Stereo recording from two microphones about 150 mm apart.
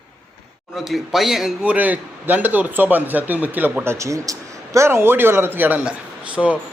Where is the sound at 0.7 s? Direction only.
Centre (ahead or behind).